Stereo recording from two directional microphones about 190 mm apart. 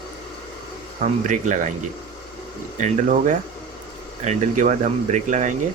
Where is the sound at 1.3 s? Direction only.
40° right (ahead or behind).